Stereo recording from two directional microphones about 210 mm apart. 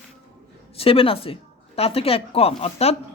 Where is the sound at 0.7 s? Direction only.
25° left (ahead or behind).